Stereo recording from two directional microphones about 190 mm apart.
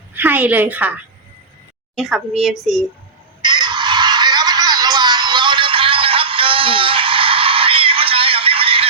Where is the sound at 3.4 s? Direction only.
25° right (ahead or behind).